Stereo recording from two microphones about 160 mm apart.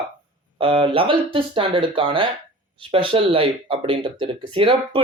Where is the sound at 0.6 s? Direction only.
35° right (ahead or behind).